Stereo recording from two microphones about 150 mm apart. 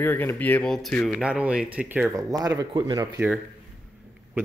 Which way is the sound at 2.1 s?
20° right (ahead or behind).